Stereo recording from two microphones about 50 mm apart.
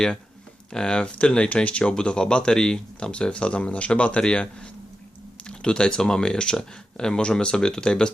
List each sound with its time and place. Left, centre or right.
0.7 s speech: centre